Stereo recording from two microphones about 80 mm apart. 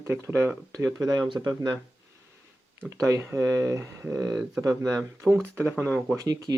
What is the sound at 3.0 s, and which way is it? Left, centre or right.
Speech, right.